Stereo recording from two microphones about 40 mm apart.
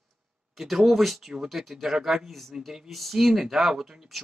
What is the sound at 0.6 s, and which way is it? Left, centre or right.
Speech, centre.